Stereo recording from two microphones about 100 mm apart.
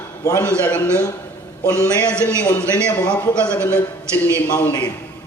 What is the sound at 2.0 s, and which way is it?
A man's voice, 10° left (ahead or behind).